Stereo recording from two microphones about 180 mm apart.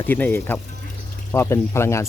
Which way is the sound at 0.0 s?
10° left (ahead or behind).